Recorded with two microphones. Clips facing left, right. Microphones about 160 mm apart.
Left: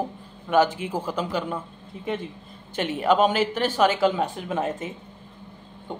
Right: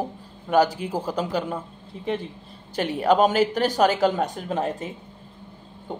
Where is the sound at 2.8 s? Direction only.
40° right (ahead or behind).